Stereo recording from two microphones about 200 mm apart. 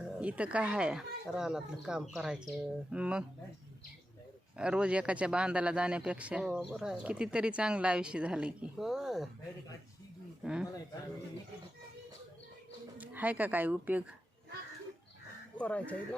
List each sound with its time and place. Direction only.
0.0 s speech: 5° right (ahead or behind)
4.5 s speech: 5° right (ahead or behind)
10.4 s speech: 5° right (ahead or behind)
13.0 s speech: 10° right (ahead or behind)
15.5 s speech: 5° left (ahead or behind)